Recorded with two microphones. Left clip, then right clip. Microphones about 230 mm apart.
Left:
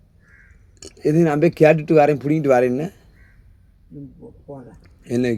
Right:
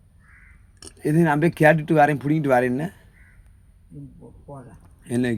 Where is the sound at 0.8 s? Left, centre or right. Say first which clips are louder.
Left 4 dB; centre.